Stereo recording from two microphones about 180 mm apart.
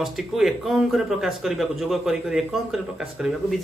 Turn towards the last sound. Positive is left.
turn(degrees=0)  # may be behind; listen again after turning